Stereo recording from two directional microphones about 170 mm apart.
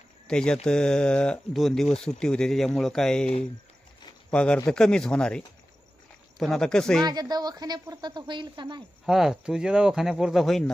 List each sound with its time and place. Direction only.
0.3 s speech: 5° left (ahead or behind)
6.4 s speech: centre (ahead or behind)
7.0 s a woman's voice: 25° right (ahead or behind)
9.0 s speech: centre (ahead or behind)